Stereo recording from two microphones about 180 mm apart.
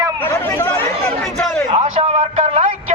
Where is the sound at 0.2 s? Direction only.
10° left (ahead or behind).